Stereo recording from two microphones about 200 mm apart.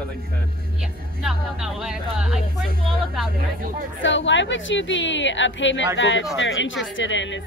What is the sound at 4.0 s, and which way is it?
A woman's voice, 65° left (ahead or behind).